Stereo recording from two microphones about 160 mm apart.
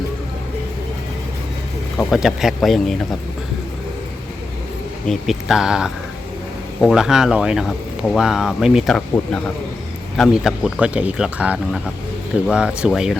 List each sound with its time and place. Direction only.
2.0 s speech: centre (ahead or behind)
5.0 s speech: centre (ahead or behind)